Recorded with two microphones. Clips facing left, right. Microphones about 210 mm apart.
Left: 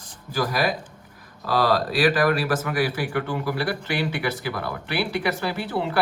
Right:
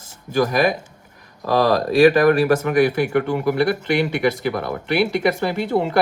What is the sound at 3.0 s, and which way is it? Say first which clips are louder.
Speech: right 7 dB; 25° right (ahead or behind).